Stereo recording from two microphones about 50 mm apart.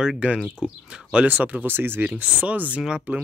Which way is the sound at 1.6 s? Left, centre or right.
Right.